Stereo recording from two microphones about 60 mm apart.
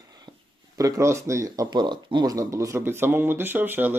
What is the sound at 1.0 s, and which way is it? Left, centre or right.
Speech, right.